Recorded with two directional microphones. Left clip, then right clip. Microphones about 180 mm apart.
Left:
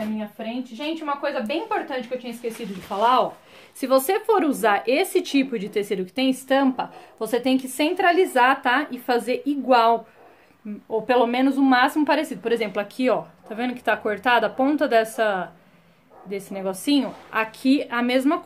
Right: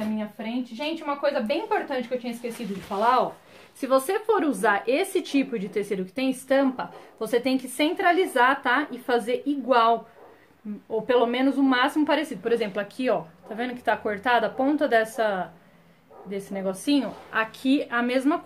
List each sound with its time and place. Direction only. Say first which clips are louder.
0.4 s a woman's voice: left 1 dB; 15° left (ahead or behind)
3.0 s speech: left 3 dB; 25° left (ahead or behind)